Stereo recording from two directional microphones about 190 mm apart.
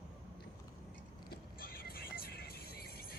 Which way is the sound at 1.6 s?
50° left (ahead or behind).